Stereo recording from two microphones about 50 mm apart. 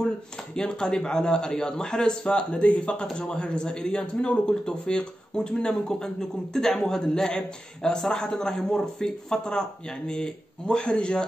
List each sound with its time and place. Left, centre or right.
0.6 s a man's voice: centre